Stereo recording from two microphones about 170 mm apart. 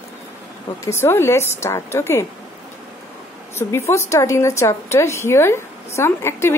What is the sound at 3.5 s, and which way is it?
A woman's voice, 15° left (ahead or behind).